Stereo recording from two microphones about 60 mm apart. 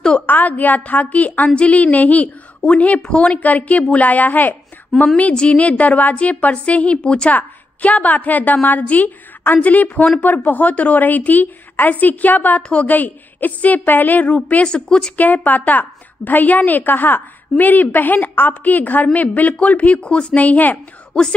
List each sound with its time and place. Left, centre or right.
0.3 s a woman's voice: left
15.1 s a woman's voice: left
21.1 s speech: centre